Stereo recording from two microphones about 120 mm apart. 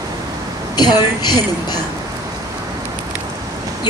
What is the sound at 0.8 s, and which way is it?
A woman's voice, 35° left (ahead or behind).